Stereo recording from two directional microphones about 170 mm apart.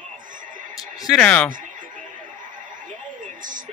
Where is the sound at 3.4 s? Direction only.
50° right (ahead or behind).